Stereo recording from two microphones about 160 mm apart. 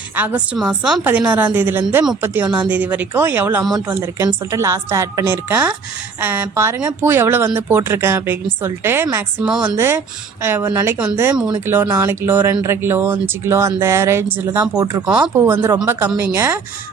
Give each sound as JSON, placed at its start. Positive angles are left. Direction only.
{"t": 0.2, "sound": "a woman's voice", "side_deg": -10}
{"t": 14.6, "sound": "speech", "side_deg": -25}
{"t": 15.4, "sound": "a woman's voice", "side_deg": -15}